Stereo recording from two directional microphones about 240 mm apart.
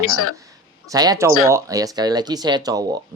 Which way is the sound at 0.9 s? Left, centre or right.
Centre.